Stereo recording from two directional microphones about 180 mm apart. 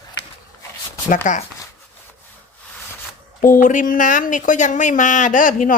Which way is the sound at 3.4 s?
50° left (ahead or behind).